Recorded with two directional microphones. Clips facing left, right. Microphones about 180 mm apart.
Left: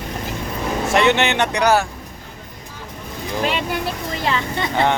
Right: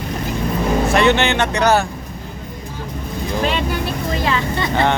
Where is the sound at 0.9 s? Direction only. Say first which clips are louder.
Left 1 dB; 20° left (ahead or behind).